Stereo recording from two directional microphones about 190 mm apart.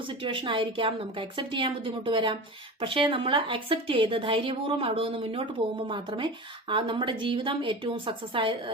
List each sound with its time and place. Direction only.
0.1 s a woman's voice: 25° right (ahead or behind)